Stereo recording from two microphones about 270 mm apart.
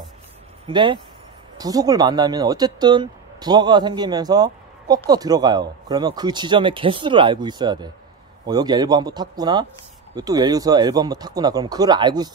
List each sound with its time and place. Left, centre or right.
0.7 s speech: centre